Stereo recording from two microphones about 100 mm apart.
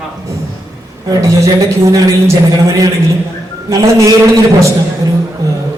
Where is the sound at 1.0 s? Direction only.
35° right (ahead or behind).